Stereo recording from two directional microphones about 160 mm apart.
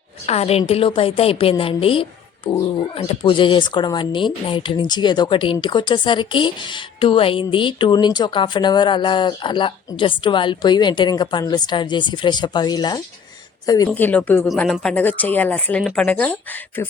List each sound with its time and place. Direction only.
0.3 s a woman's voice: 40° left (ahead or behind); by 13.9 s 25° left (ahead or behind)
13.9 s speech: 10° left (ahead or behind)